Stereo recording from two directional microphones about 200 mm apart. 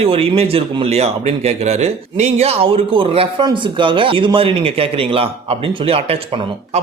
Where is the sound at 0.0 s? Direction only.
30° right (ahead or behind).